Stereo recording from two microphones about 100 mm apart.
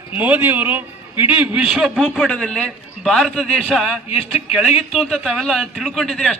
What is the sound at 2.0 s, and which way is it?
A man's voice, 5° left (ahead or behind).